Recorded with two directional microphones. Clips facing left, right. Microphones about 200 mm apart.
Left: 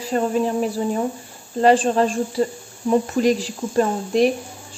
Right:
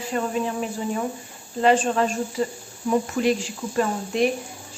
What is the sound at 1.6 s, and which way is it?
A woman's voice, 35° left (ahead or behind).